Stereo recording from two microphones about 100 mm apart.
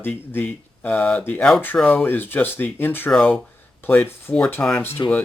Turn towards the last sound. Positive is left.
turn(degrees=25)  # may be behind; listen again after turning